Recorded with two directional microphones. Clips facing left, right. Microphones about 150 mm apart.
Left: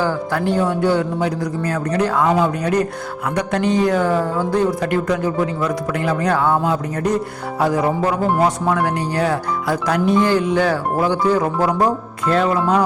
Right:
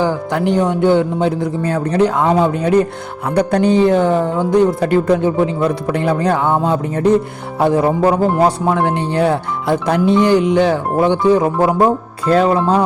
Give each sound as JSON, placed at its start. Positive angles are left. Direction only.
{"t": 0.0, "sound": "speech", "side_deg": -20}
{"t": 4.8, "sound": "speech", "side_deg": -30}
{"t": 12.3, "sound": "speech", "side_deg": -30}